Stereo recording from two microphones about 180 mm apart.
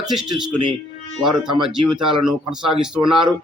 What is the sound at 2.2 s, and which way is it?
A man's voice, 5° right (ahead or behind).